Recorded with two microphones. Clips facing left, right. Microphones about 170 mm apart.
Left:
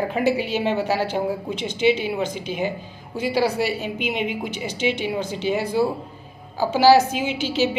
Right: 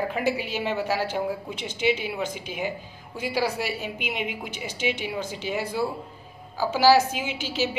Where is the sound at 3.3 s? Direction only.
25° left (ahead or behind).